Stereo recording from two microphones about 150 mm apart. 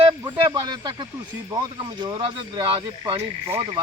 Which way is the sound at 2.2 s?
35° right (ahead or behind).